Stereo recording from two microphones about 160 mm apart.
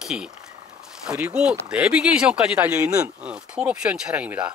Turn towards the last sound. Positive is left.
turn(degrees=-10)  # may be behind; listen again after turning